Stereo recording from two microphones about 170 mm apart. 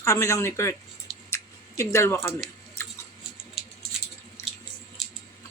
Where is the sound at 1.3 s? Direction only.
15° left (ahead or behind).